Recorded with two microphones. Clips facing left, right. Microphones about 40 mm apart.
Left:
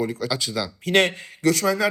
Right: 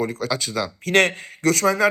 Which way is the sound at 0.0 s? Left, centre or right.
Right.